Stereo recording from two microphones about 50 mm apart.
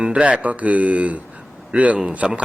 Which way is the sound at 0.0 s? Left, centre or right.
Right.